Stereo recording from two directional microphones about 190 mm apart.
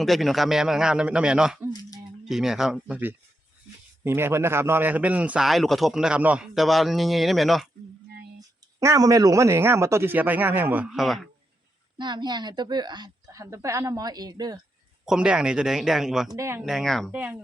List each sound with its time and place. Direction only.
0.0 s a man's voice: centre (ahead or behind)
8.4 s speech: 15° right (ahead or behind); by 11.3 s centre (ahead or behind)
11.9 s a woman's voice: 25° right (ahead or behind)
15.0 s a man's voice: 5° right (ahead or behind)
16.3 s speech: 15° right (ahead or behind)
16.6 s a man's voice: centre (ahead or behind)